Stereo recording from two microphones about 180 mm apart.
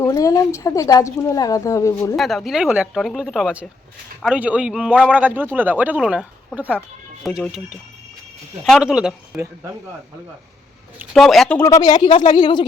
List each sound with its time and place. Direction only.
0.0 s speech: 20° left (ahead or behind)
2.1 s a man's voice: centre (ahead or behind)
8.6 s a man's voice: centre (ahead or behind)
11.1 s a man's voice: centre (ahead or behind)
11.6 s speech: 20° left (ahead or behind)